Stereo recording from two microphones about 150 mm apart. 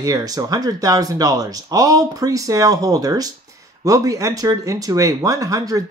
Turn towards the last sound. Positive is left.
turn(degrees=-25)  # may be behind; listen again after turning